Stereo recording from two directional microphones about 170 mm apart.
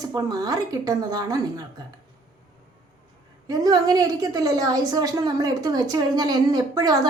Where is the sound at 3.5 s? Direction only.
20° right (ahead or behind).